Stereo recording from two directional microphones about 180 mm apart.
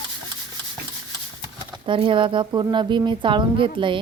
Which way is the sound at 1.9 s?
30° right (ahead or behind).